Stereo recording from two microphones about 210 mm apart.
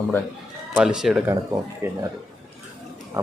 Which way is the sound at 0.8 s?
5° right (ahead or behind).